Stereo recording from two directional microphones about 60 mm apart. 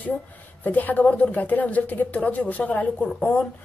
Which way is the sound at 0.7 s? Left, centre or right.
Left.